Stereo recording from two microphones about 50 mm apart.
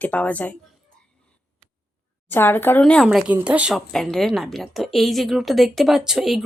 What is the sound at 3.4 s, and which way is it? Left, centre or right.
Speech, right.